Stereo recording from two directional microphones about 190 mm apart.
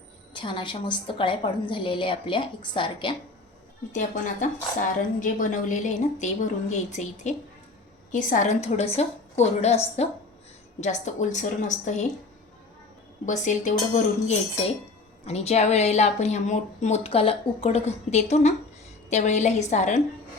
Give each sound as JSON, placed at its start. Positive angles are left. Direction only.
{"t": 0.3, "sound": "a woman's voice", "side_deg": 25}
{"t": 3.9, "sound": "a woman's voice", "side_deg": 40}
{"t": 13.2, "sound": "a woman's voice", "side_deg": 40}